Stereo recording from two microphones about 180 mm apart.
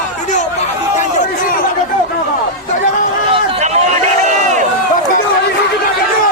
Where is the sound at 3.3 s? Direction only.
35° right (ahead or behind).